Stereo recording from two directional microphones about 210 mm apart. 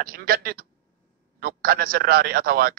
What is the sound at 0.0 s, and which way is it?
A man's voice, 45° right (ahead or behind).